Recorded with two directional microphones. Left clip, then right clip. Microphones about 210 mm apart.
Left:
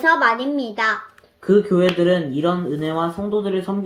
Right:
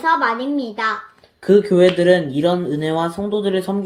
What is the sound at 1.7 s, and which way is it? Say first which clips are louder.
Speech: right 4 dB; 35° right (ahead or behind).